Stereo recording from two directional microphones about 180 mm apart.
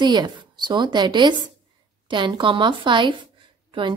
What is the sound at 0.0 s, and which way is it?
Speech, 25° right (ahead or behind).